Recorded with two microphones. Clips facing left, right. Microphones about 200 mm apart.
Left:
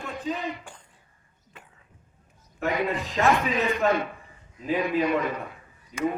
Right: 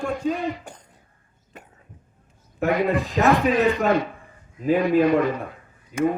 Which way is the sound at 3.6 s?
60° right (ahead or behind).